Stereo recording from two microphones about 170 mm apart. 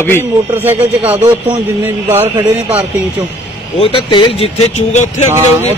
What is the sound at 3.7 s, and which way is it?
Speech, 30° left (ahead or behind).